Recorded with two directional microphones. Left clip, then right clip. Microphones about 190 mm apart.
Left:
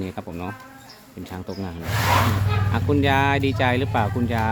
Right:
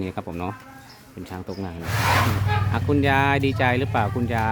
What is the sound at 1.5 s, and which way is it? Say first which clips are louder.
Speech: even; 5° right (ahead or behind).